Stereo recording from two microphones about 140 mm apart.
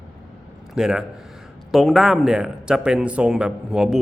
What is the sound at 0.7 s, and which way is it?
A man's voice, 5° right (ahead or behind).